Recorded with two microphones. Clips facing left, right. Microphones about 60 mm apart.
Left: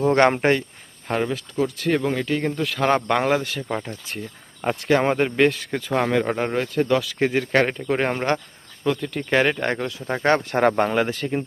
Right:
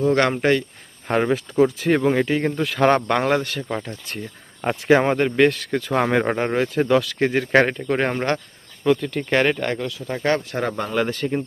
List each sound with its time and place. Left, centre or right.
0.0 s speech: left
1.2 s speech: right
1.8 s speech: centre
2.6 s speech: centre
4.6 s speech: centre
6.1 s speech: centre
6.4 s speech: centre
9.6 s speech: left
10.2 s speech: left
10.9 s speech: centre